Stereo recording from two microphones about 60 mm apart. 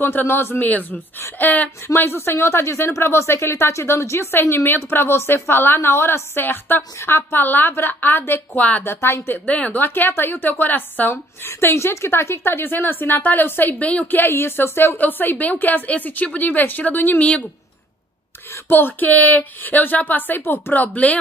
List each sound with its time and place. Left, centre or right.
0.0 s a woman's voice: left
2.0 s a woman's voice: left
9.0 s speech: left
9.5 s a woman's voice: left
9.8 s a woman's voice: left
13.8 s a woman's voice: left
14.2 s a woman's voice: left
17.2 s a woman's voice: left
18.5 s a woman's voice: left